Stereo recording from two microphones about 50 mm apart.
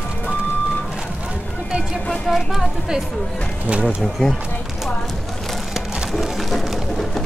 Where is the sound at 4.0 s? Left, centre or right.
Centre.